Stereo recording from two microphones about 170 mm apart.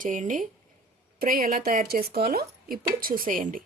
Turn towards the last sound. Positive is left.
turn(degrees=-50)  # may be behind; listen again after turning